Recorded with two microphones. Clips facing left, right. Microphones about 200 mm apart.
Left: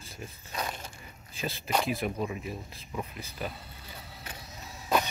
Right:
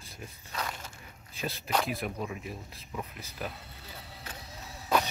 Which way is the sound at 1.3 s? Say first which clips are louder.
Left 1 dB; centre (ahead or behind).